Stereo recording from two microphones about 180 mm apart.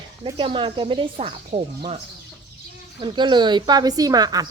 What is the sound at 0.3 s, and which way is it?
Speech, 30° right (ahead or behind).